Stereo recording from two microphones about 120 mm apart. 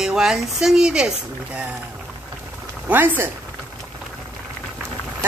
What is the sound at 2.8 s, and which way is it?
Female singing, 15° right (ahead or behind).